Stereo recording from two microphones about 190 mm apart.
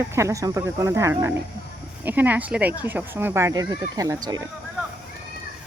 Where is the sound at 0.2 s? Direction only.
15° right (ahead or behind).